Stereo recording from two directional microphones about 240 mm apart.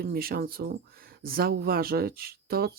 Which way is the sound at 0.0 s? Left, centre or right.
Right.